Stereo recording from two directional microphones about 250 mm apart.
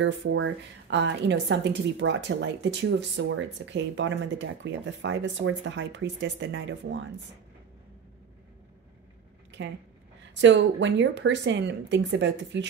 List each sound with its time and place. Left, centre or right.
0.0 s a woman's voice: right
10.4 s a woman's voice: right